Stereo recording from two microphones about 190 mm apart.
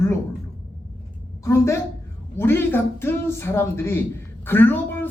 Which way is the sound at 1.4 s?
15° left (ahead or behind).